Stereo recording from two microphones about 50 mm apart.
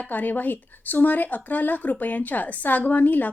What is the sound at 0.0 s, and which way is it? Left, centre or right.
A woman's voice, left.